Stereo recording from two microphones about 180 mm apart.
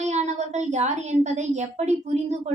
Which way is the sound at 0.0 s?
40° right (ahead or behind).